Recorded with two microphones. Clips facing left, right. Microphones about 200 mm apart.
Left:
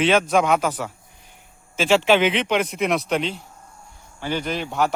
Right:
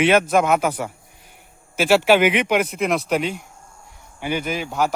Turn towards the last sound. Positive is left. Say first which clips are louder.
# even
turn(degrees=0)  # may be behind; listen again after turning